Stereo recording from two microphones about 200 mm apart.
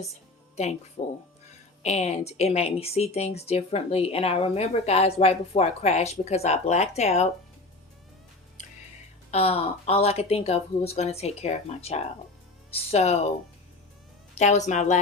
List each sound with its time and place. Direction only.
1.0 s a woman's voice: 25° left (ahead or behind)
9.3 s a woman's voice: 30° left (ahead or behind)
14.3 s a woman's voice: 35° left (ahead or behind)